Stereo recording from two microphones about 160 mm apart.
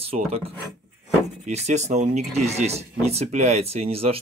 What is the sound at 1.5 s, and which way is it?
Speech, 45° right (ahead or behind).